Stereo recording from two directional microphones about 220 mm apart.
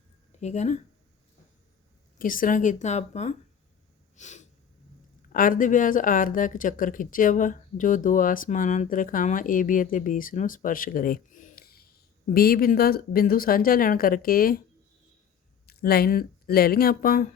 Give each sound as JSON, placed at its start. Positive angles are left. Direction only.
{"t": 0.3, "sound": "speech", "side_deg": 30}
{"t": 2.1, "sound": "speech", "side_deg": 40}
{"t": 4.2, "sound": "snort", "side_deg": 30}
{"t": 5.3, "sound": "speech", "side_deg": 40}
{"t": 15.6, "sound": "speech", "side_deg": 45}